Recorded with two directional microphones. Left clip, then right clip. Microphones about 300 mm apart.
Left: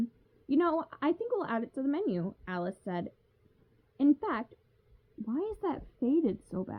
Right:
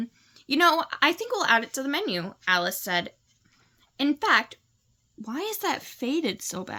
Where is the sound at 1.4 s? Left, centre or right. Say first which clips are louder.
Right 11 dB; centre.